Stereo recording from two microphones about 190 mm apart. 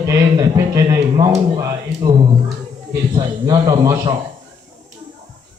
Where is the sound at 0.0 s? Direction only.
15° right (ahead or behind).